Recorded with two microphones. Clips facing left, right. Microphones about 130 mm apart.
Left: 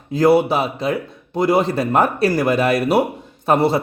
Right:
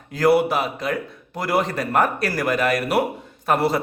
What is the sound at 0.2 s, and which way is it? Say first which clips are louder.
A man's voice: left 3 dB; 25° left (ahead or behind).